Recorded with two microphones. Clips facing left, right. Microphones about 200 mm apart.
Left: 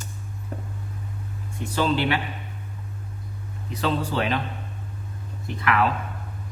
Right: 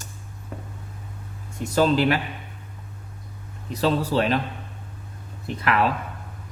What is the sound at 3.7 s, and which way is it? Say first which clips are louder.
Speech: right 3 dB; 40° right (ahead or behind).